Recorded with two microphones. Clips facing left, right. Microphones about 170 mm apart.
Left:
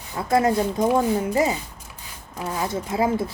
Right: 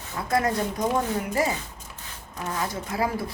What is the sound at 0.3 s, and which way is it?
A woman's voice, 25° left (ahead or behind).